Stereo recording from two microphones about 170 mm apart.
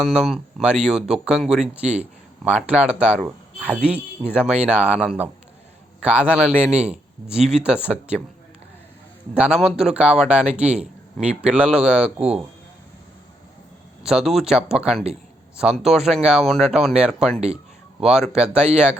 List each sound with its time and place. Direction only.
0.0 s a man's voice: centre (ahead or behind)
9.3 s a man's voice: 5° right (ahead or behind)
14.0 s speech: centre (ahead or behind)